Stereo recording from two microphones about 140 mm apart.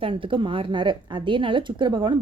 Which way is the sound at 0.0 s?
40° right (ahead or behind).